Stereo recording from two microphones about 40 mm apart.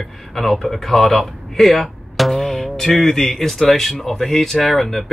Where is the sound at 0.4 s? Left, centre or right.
Centre.